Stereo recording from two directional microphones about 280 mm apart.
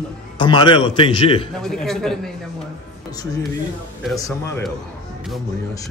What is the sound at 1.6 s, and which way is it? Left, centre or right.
Speech, centre.